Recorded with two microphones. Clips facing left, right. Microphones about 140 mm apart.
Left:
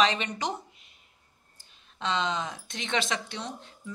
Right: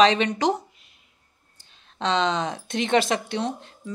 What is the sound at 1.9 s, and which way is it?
Speech, 85° right.